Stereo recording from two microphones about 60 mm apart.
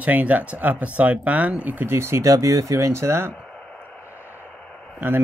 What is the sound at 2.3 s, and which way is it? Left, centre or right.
Speech, right.